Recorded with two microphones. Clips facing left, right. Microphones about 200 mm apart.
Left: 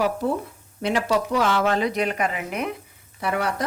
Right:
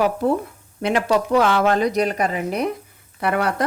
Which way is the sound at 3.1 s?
60° right (ahead or behind).